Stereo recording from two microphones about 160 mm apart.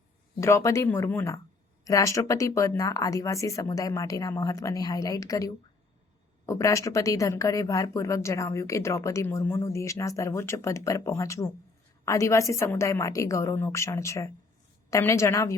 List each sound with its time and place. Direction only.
0.3 s speech: 15° left (ahead or behind)